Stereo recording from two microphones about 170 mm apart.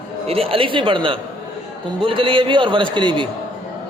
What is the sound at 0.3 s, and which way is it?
A man's voice, 35° right (ahead or behind).